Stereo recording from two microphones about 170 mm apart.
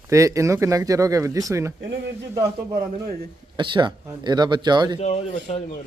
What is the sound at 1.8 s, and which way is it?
Speech, 90° right.